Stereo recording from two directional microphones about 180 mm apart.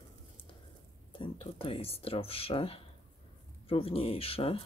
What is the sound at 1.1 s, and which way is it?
Speech, 30° left (ahead or behind).